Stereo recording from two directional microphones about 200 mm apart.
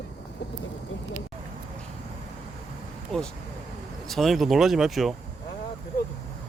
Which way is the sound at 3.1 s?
Centre (ahead or behind).